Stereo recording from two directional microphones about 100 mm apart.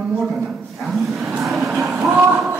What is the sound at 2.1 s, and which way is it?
Speech, 25° right (ahead or behind).